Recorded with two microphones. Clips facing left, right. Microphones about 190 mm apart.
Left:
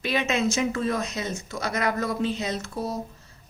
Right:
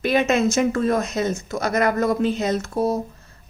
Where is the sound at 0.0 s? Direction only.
50° right (ahead or behind).